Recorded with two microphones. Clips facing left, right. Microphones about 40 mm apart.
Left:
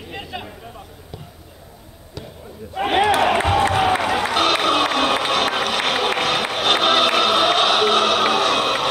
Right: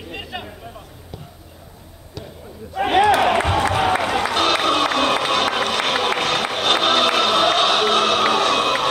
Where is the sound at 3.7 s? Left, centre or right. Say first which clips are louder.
Left 1 dB; centre.